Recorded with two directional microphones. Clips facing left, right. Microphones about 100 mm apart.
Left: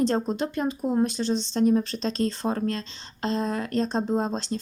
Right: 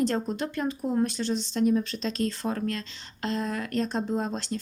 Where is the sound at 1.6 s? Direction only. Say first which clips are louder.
Left 2 dB; 40° left (ahead or behind).